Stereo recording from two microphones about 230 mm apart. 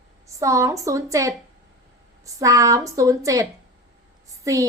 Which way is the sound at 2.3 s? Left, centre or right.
Centre.